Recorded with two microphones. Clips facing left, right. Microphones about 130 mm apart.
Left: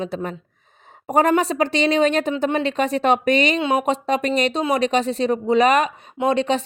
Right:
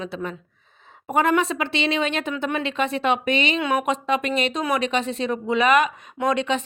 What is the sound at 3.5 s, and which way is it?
A woman's voice, 25° left (ahead or behind).